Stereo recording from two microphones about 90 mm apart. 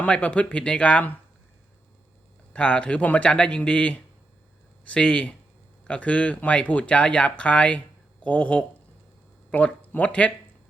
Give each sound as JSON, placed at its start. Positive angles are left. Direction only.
{"t": 0.0, "sound": "speech", "side_deg": 15}
{"t": 2.5, "sound": "speech", "side_deg": 15}